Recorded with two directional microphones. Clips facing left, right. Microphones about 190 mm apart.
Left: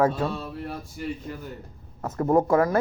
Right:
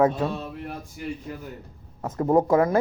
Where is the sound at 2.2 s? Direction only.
20° right (ahead or behind).